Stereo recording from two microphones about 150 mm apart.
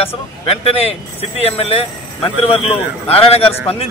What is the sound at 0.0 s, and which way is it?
Speech, 40° left (ahead or behind).